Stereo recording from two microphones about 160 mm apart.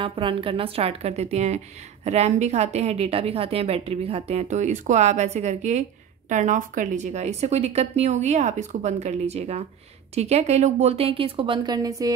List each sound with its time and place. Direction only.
0.0 s a woman's voice: 35° right (ahead or behind)